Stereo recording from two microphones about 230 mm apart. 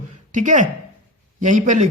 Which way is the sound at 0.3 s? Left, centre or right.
Right.